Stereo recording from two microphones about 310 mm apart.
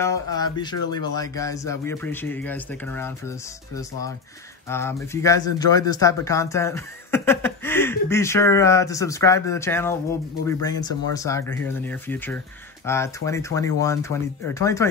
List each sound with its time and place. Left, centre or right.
0.0 s speech: centre